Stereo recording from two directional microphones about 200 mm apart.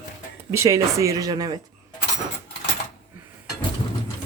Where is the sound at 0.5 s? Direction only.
15° right (ahead or behind).